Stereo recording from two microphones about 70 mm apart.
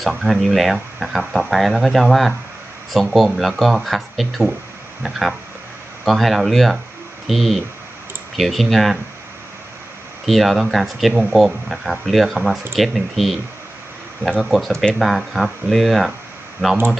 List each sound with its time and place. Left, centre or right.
0.0 s speech: centre
6.1 s speech: centre
10.2 s speech: centre